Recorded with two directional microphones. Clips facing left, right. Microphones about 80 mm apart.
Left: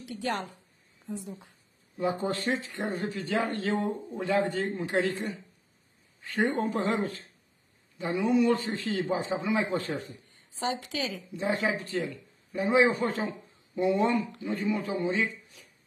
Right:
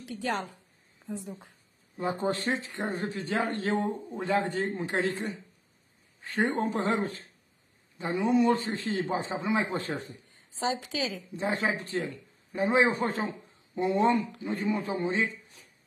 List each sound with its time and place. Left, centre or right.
0.2 s speech: right
2.1 s speech: right
6.2 s speech: right
11.3 s speech: right